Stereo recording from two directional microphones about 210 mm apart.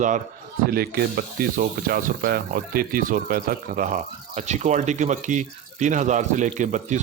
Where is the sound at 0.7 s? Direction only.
45° right (ahead or behind).